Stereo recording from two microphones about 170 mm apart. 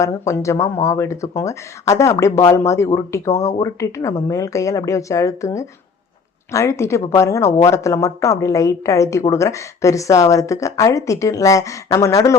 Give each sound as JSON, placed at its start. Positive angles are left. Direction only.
{"t": 0.0, "sound": "a woman's voice", "side_deg": 15}